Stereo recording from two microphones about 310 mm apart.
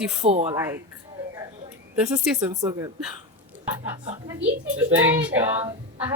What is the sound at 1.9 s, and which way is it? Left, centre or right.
Speech, centre.